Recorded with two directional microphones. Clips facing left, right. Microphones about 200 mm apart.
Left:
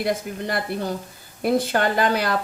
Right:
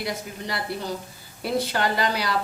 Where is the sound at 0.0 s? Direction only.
50° left (ahead or behind).